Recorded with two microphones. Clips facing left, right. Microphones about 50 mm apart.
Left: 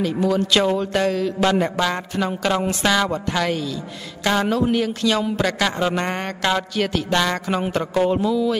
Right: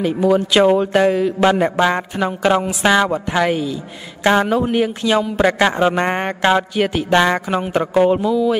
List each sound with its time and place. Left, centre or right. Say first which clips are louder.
0.0 s a man's voice: right 4 dB; centre